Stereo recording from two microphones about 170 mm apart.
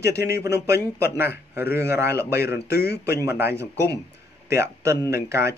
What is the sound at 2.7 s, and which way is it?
Speech, 70° left (ahead or behind).